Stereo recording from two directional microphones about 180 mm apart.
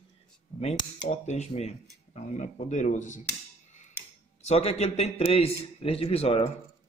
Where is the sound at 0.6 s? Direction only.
35° left (ahead or behind).